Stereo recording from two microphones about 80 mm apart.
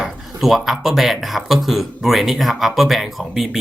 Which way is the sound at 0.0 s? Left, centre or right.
Centre.